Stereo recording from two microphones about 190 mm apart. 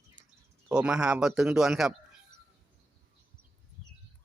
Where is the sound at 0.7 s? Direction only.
5° right (ahead or behind).